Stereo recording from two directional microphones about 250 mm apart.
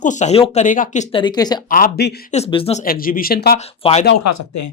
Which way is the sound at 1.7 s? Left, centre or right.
Left.